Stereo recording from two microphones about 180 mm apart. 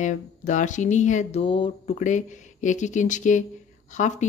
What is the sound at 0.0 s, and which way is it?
Speech, 45° left (ahead or behind).